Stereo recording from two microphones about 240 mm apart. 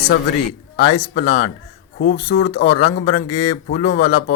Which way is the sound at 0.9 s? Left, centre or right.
Left.